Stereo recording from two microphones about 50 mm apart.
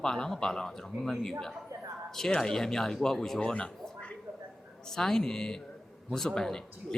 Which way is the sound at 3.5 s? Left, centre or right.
Left.